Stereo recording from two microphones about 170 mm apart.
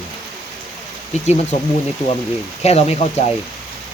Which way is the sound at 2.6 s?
40° left (ahead or behind).